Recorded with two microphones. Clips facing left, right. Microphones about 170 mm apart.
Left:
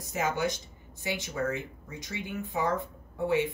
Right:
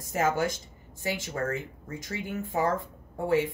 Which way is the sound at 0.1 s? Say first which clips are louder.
Right 3 dB; 45° right (ahead or behind).